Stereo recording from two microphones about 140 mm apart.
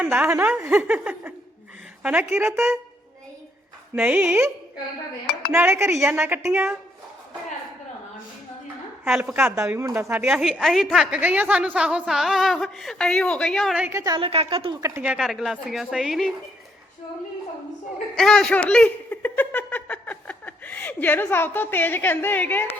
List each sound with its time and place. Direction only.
0.0 s speech: 15° right (ahead or behind)
3.9 s speech: 10° right (ahead or behind)
9.0 s a woman's voice: 5° right (ahead or behind)
13.8 s speech: 25° right (ahead or behind)
14.2 s speech: 45° right (ahead or behind)
14.7 s speech: 20° right (ahead or behind)
15.0 s a woman's voice: 5° right (ahead or behind)
18.2 s speech: 5° left (ahead or behind)